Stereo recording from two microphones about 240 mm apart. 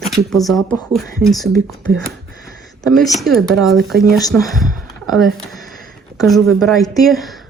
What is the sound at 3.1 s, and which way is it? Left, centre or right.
Speech, centre.